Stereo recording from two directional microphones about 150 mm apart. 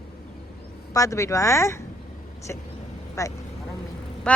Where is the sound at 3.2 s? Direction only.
20° left (ahead or behind).